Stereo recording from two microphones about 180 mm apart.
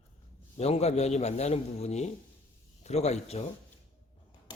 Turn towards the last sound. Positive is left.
turn(degrees=35)  # may be behind; listen again after turning